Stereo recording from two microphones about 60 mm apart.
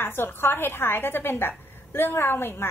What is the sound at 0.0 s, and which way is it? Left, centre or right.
A woman's voice, left.